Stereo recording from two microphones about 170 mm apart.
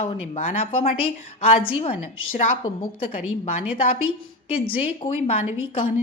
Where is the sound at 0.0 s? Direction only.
40° left (ahead or behind).